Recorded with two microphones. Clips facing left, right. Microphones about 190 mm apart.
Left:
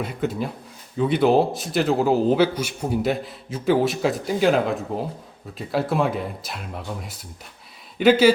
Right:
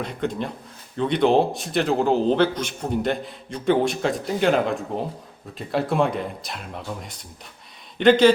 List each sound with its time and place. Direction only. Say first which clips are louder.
0.0 s a man's voice: left 1 dB; 5° left (ahead or behind)